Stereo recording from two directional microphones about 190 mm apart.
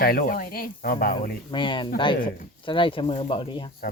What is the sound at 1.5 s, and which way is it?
Speech, 25° left (ahead or behind).